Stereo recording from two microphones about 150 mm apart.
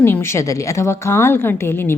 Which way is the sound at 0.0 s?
15° left (ahead or behind).